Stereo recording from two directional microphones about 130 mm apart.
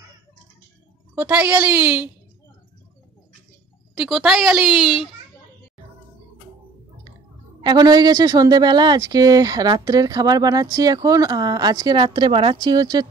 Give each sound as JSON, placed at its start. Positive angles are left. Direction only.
{"t": 1.1, "sound": "a child's voice", "side_deg": -10}
{"t": 3.9, "sound": "a woman's voice", "side_deg": -5}
{"t": 7.6, "sound": "speech", "side_deg": -30}